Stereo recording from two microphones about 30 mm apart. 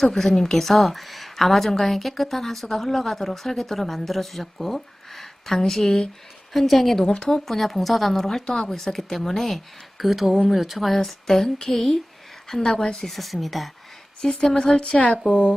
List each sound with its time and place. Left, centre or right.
0.0 s a woman's voice: centre
7.0 s speech: left
7.3 s speech: centre
8.4 s speech: left; by 9.6 s centre
10.0 s speech: centre
10.9 s speech: centre
13.1 s speech: centre
14.4 s speech: centre
14.8 s speech: left